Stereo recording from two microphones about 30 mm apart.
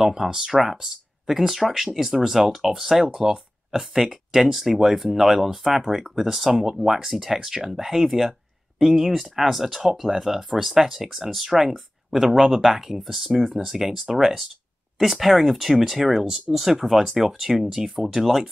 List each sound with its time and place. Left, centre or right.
0.0 s speech: centre
5.8 s speech: centre
6.1 s speech: centre
11.4 s speech: centre